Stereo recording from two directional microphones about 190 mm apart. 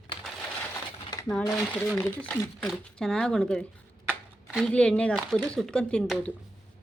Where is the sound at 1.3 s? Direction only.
Centre (ahead or behind).